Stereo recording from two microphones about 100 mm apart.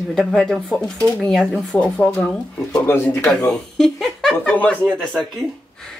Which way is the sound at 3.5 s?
5° left (ahead or behind).